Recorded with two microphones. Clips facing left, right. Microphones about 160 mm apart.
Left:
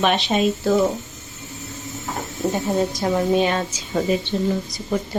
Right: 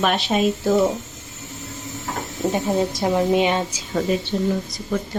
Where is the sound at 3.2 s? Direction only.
15° right (ahead or behind).